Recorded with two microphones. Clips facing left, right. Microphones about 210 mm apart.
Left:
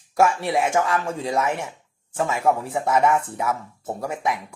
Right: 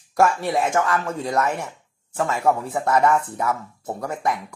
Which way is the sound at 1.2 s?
Centre (ahead or behind).